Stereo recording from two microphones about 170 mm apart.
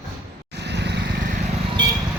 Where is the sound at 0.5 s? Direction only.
85° right.